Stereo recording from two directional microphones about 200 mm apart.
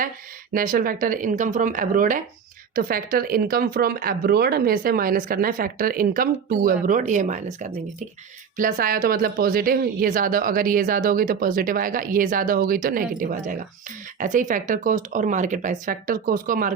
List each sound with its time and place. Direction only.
0.5 s speech: 45° right (ahead or behind)